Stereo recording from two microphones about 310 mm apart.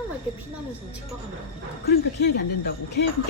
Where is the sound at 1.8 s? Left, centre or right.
Left.